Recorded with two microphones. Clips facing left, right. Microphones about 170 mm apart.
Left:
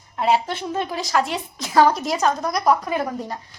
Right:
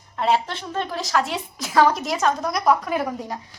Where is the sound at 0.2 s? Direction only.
5° left (ahead or behind).